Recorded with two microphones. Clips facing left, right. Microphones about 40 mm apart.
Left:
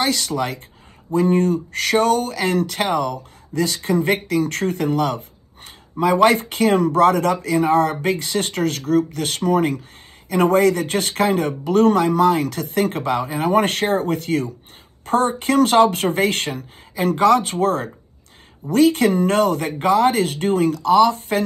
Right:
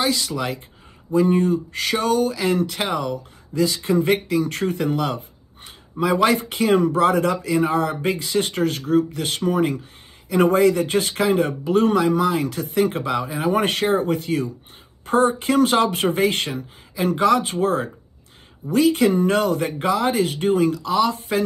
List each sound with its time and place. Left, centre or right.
0.0 s speech: left